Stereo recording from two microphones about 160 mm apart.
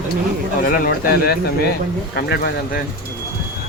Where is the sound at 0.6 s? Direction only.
65° left (ahead or behind).